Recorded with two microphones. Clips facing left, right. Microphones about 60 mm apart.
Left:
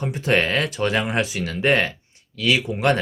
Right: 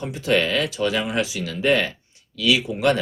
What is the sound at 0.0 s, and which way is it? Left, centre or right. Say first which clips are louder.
Speech: left 1 dB; left.